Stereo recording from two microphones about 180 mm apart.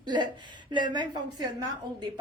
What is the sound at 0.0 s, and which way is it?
A woman's voice, 25° right (ahead or behind).